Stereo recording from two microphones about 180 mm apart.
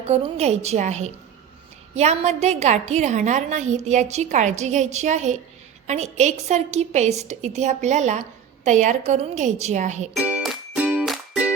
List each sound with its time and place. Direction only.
0.0 s a woman's voice: 35° right (ahead or behind)
10.2 s music: 5° right (ahead or behind)